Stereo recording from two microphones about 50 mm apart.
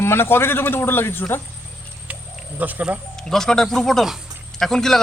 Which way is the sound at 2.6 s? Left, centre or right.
Right.